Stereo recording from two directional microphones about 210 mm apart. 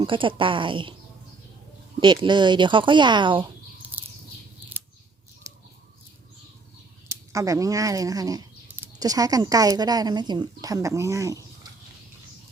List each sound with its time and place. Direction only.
0.0 s speech: 25° right (ahead or behind)
2.0 s speech: 20° right (ahead or behind)
5.5 s a sound: 15° right (ahead or behind)
7.1 s speech: 15° right (ahead or behind)